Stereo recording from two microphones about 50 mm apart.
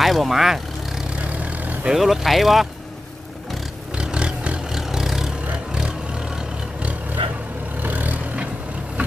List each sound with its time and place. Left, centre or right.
0.0 s speech: centre
1.1 s vehicle: right
1.9 s speech: centre
4.0 s a sound: centre
4.7 s vehicle: centre
7.8 s vehicle: right